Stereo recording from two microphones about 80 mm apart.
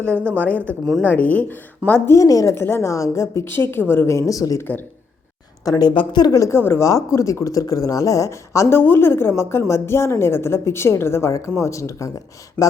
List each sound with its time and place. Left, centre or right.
0.1 s speech: right
0.4 s speech: centre
2.1 s a woman's voice: left
2.6 s speech: left
2.9 s speech: left
4.3 s a woman's voice: left
4.6 s speech: left
5.6 s a woman's voice: left
5.9 s speech: left
6.3 s speech: left
6.6 s speech: left
6.8 s speech: left